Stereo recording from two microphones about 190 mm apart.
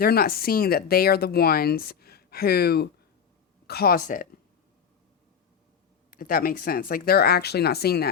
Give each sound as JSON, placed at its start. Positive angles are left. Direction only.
{"t": 0.0, "sound": "speech", "side_deg": 55}
{"t": 6.1, "sound": "speech", "side_deg": 45}